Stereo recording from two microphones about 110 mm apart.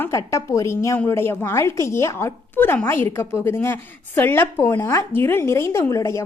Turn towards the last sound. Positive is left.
turn(degrees=25)  # may be behind; listen again after turning